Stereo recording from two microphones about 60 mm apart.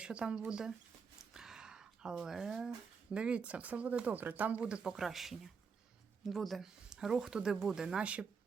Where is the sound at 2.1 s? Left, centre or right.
Centre.